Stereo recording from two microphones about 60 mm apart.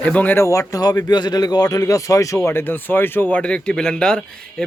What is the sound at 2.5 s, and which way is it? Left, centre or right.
Speech, left.